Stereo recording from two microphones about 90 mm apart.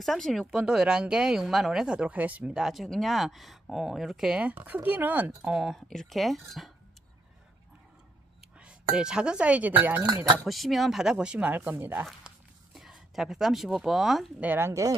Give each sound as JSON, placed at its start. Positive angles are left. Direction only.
{"t": 0.0, "sound": "speech", "side_deg": 0}
{"t": 5.5, "sound": "speech", "side_deg": -5}
{"t": 8.5, "sound": "speech", "side_deg": -10}
{"t": 10.4, "sound": "speech", "side_deg": 0}
{"t": 12.7, "sound": "speech", "side_deg": -5}
{"t": 14.4, "sound": "a woman's voice", "side_deg": -20}
{"t": 14.7, "sound": "speech", "side_deg": -40}